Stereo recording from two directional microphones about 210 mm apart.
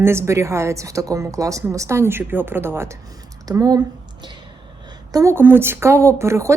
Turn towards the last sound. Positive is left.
turn(degrees=-15)  # may be behind; listen again after turning